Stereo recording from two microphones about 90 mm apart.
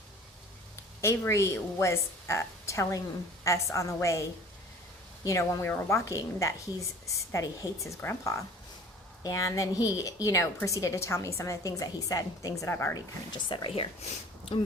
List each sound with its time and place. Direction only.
1.0 s a woman's voice: 30° left (ahead or behind)
13.5 s speech: 75° left (ahead or behind)